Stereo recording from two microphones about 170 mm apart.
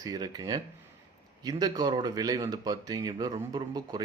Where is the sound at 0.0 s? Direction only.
20° right (ahead or behind).